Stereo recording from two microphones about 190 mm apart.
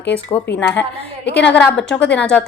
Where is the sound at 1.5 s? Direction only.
5° left (ahead or behind).